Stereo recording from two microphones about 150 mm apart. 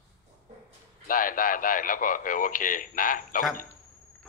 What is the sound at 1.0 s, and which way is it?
Speech, 65° left (ahead or behind).